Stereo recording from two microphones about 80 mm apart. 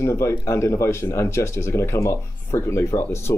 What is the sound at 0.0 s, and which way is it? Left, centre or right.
Speech, left.